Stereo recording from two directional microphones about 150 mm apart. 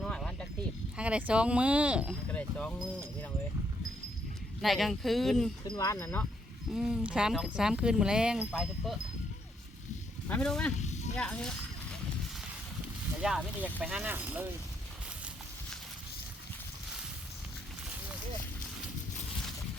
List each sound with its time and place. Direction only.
0.0 s a sound: 5° left (ahead or behind)
0.9 s speech: 5° right (ahead or behind)
2.3 s speech: 10° left (ahead or behind)
4.6 s speech: centre (ahead or behind)
5.6 s speech: 25° left (ahead or behind)
6.7 s speech: 5° right (ahead or behind)
10.2 s speech: 5° left (ahead or behind)
10.8 s snake: 50° left (ahead or behind)
11.2 s speech: 5° left (ahead or behind)
13.2 s speech: 5° right (ahead or behind)